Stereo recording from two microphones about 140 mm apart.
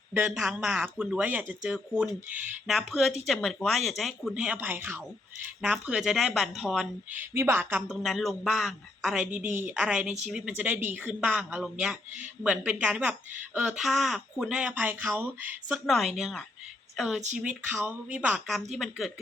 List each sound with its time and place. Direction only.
0.3 s speech: 5° right (ahead or behind)
7.2 s speech: 15° right (ahead or behind)
7.9 s speech: centre (ahead or behind)
16.1 s speech: centre (ahead or behind)